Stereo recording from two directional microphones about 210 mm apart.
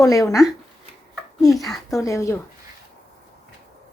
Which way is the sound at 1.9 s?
15° left (ahead or behind).